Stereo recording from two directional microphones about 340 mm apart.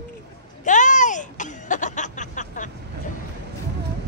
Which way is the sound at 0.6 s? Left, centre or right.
Left.